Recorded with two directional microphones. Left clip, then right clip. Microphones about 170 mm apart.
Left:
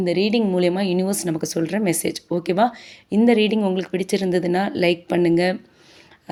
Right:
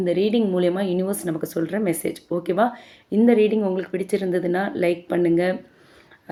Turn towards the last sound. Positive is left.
turn(degrees=40)  # may be behind; listen again after turning